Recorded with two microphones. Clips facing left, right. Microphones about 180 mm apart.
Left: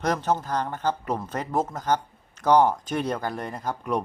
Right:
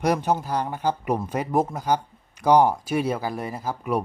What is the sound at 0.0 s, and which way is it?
Speech, 10° right (ahead or behind).